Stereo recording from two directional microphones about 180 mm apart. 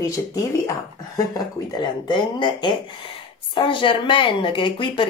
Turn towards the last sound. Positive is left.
turn(degrees=25)  # may be behind; listen again after turning